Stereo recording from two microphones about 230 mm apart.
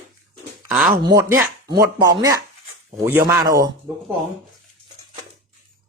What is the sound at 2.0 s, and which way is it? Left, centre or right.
A man's voice, centre.